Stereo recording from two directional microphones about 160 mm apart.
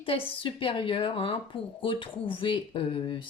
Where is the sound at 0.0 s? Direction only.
35° left (ahead or behind).